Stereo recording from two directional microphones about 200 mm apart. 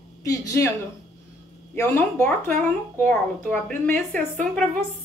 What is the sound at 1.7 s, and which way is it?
A woman's voice, 15° left (ahead or behind).